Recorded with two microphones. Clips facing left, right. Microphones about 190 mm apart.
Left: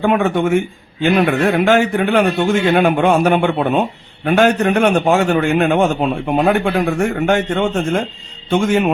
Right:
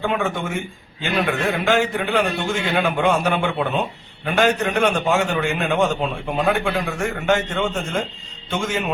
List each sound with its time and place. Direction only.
0.0 s a man's voice: 60° left (ahead or behind)